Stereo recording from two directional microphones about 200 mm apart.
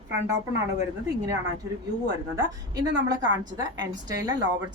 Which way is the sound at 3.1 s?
20° right (ahead or behind).